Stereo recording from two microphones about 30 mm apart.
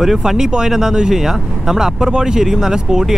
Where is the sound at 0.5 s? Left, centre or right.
Right.